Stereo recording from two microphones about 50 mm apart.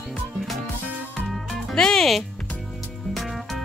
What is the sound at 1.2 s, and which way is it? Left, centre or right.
Music, centre.